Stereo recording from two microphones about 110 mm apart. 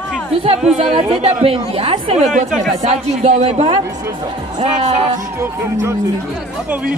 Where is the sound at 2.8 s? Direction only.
90° right.